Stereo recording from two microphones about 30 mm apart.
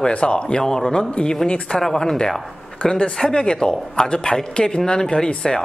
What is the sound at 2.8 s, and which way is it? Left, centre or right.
Speech, left.